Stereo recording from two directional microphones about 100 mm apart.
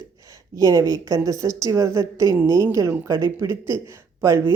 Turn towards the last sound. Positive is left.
turn(degrees=-30)  # may be behind; listen again after turning